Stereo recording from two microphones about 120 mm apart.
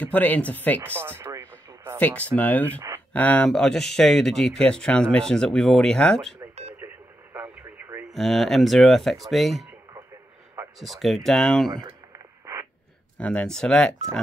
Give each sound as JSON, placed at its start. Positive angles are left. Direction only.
{"t": 0.0, "sound": "speech", "side_deg": 15}
{"t": 0.8, "sound": "a sound", "side_deg": -20}
{"t": 2.0, "sound": "speech", "side_deg": 15}
{"t": 6.8, "sound": "a sound", "side_deg": -20}
{"t": 7.3, "sound": "radio", "side_deg": -15}
{"t": 8.1, "sound": "speech", "side_deg": 0}
{"t": 10.8, "sound": "speech", "side_deg": 0}
{"t": 13.2, "sound": "speech", "side_deg": 10}